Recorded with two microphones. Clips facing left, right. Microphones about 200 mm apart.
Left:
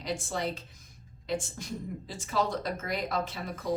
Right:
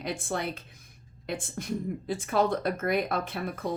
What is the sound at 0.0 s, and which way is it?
A woman's voice, 55° right (ahead or behind).